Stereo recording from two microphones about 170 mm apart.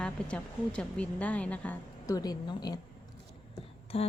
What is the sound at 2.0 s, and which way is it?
Speech, 20° left (ahead or behind).